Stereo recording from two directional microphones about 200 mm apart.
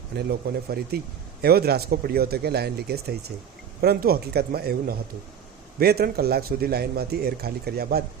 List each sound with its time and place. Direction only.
0.2 s a man's voice: 50° right (ahead or behind)